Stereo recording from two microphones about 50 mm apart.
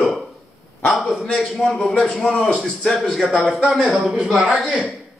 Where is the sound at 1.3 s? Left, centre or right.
Centre.